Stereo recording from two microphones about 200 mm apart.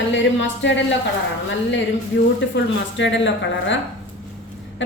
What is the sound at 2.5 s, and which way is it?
A woman's voice, 65° left (ahead or behind).